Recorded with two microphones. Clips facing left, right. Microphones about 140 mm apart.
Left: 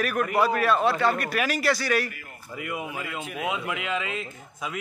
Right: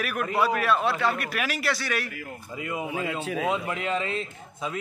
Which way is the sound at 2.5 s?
25° right (ahead or behind).